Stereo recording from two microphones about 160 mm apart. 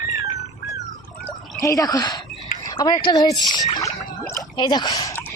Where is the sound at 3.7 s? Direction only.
20° left (ahead or behind).